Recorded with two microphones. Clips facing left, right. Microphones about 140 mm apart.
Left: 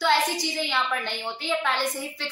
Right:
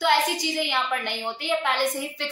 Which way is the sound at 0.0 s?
20° right (ahead or behind).